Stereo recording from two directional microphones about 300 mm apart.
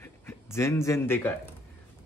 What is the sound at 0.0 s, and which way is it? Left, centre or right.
Speech, centre.